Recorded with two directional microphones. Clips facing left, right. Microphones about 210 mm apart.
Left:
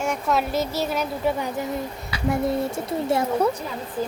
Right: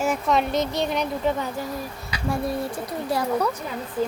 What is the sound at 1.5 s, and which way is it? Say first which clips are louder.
Speech: left 3 dB; 20° left (ahead or behind).